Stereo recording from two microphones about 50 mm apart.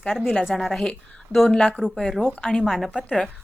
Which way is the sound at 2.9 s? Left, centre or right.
Centre.